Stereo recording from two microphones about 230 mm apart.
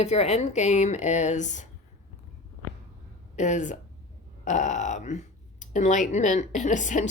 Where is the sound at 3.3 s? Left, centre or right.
Left.